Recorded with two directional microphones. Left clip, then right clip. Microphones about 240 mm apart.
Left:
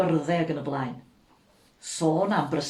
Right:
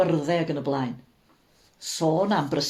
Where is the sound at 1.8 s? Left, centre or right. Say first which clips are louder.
Right 1 dB; right.